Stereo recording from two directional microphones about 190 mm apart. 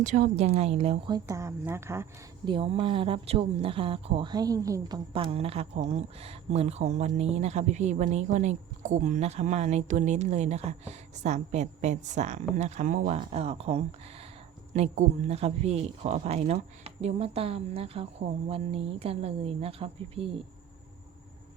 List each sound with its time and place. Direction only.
0.0 s speech: 40° right (ahead or behind); by 2.5 s 15° right (ahead or behind)
2.5 s speech: 30° right (ahead or behind); by 13.2 s 45° right (ahead or behind)
13.3 s speech: 35° right (ahead or behind)